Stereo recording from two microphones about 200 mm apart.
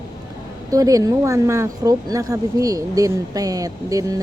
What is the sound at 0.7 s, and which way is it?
Speech, 15° right (ahead or behind).